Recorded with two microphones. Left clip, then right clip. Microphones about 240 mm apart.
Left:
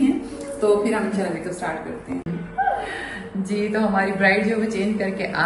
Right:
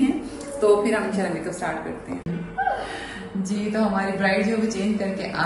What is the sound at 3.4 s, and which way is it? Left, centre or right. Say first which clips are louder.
Speech: left 2 dB; centre.